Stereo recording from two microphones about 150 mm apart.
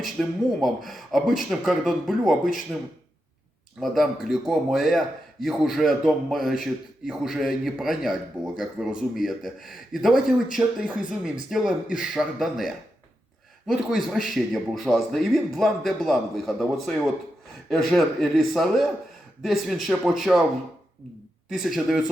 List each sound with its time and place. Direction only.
0.0 s a man's voice: centre (ahead or behind)
3.8 s a man's voice: centre (ahead or behind)
21.5 s a man's voice: centre (ahead or behind)